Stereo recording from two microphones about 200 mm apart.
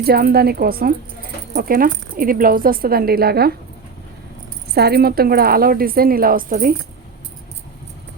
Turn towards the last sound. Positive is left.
turn(degrees=-45)  # may be behind; listen again after turning